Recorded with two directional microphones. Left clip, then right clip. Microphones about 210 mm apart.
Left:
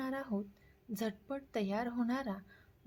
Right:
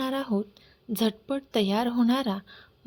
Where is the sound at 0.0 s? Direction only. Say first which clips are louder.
Right 11 dB; 30° right (ahead or behind).